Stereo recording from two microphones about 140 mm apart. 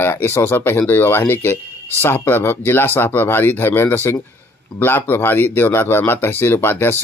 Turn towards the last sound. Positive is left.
turn(degrees=15)  # may be behind; listen again after turning